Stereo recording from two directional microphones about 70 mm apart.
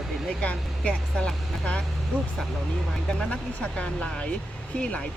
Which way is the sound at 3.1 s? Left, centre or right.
Centre.